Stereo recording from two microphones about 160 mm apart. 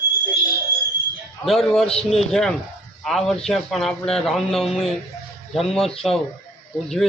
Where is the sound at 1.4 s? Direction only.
5° left (ahead or behind).